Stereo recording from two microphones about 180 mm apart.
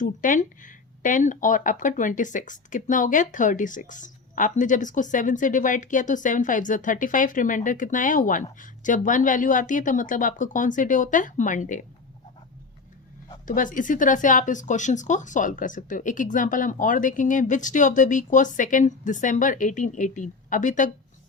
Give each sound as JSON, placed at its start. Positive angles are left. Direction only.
{"t": 0.0, "sound": "speech", "side_deg": 45}
{"t": 13.4, "sound": "speech", "side_deg": 45}